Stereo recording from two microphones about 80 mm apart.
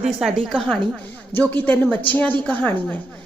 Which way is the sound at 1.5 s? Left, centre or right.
Centre.